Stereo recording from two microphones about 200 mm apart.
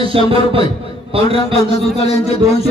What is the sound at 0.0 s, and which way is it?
A man's voice, 25° right (ahead or behind).